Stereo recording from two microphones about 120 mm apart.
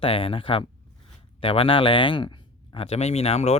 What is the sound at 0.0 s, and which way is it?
Speech, 50° left (ahead or behind).